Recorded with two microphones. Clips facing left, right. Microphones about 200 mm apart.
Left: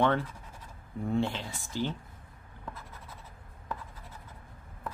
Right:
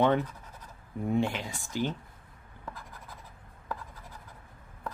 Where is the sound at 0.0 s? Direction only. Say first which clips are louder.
Right 2 dB; 20° right (ahead or behind).